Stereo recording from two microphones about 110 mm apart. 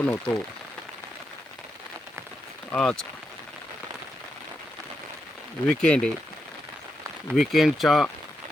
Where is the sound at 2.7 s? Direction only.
5° left (ahead or behind).